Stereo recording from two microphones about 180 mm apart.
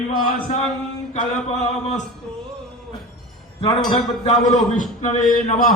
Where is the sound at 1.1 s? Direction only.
40° left (ahead or behind).